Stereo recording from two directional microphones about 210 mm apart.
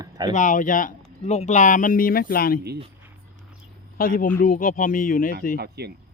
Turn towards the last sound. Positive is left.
turn(degrees=-50)  # may be behind; listen again after turning